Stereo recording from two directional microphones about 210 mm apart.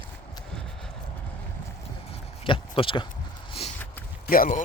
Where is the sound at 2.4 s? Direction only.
25° left (ahead or behind).